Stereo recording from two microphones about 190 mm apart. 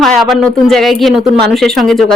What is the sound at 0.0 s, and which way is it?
A woman's voice, centre (ahead or behind).